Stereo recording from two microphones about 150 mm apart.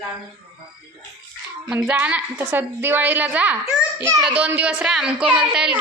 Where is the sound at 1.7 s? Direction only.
10° right (ahead or behind).